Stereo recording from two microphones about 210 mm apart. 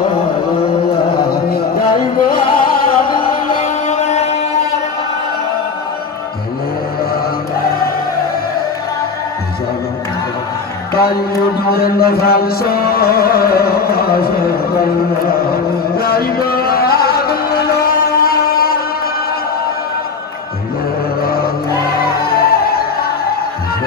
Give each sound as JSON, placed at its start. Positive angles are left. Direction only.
{"t": 1.1, "sound": "music", "side_deg": 45}
{"t": 3.5, "sound": "music", "side_deg": 35}
{"t": 11.0, "sound": "music", "side_deg": 45}
{"t": 21.2, "sound": "music", "side_deg": 45}